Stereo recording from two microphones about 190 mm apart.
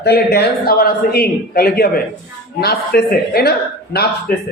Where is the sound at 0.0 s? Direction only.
55° left (ahead or behind).